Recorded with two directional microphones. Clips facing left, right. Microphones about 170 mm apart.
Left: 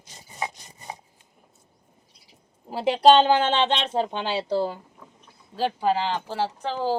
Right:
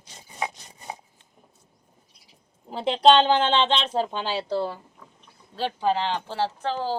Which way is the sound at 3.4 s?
45° left (ahead or behind).